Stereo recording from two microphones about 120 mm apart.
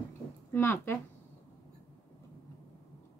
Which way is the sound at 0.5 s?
20° left (ahead or behind).